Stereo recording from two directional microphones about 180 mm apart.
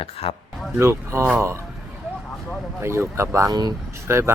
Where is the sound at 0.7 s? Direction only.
15° right (ahead or behind).